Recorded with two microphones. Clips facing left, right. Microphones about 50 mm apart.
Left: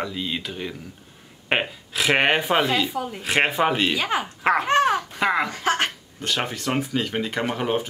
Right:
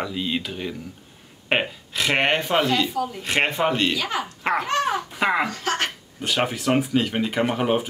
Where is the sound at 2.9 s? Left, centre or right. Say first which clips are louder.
Right 2 dB; left.